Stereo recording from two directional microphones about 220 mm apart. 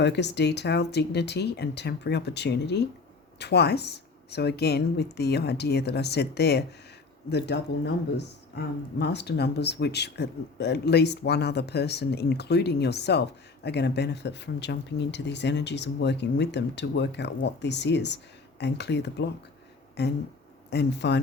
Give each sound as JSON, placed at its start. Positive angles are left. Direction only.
{"t": 0.0, "sound": "speech", "side_deg": 50}